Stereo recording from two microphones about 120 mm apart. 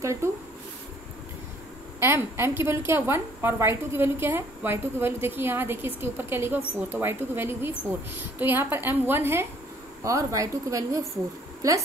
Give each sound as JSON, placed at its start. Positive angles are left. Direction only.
{"t": 0.0, "sound": "speech", "side_deg": -25}
{"t": 2.0, "sound": "a woman's voice", "side_deg": -20}